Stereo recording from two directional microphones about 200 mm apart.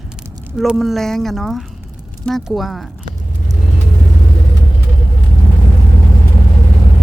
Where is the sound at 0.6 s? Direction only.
Centre (ahead or behind).